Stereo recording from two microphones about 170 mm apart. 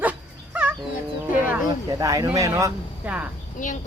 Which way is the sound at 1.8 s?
20° right (ahead or behind).